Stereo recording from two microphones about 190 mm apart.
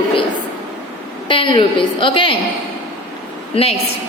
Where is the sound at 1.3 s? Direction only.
25° left (ahead or behind).